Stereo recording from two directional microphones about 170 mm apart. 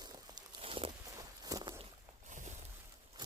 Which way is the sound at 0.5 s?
35° right (ahead or behind).